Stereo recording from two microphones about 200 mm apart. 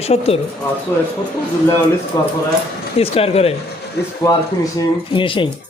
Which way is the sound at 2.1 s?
20° left (ahead or behind).